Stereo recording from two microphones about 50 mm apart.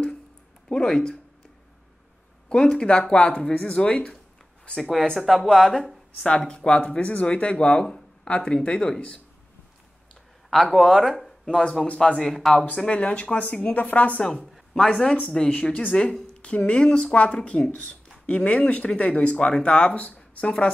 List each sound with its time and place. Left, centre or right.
0.7 s speech: centre
2.5 s speech: centre
4.7 s speech: centre; by 8.9 s left
10.5 s speech: centre
11.4 s speech: centre
12.6 s a woman's voice: left